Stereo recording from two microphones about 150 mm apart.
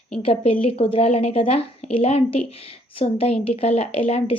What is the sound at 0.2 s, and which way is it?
A woman's voice, 40° left (ahead or behind).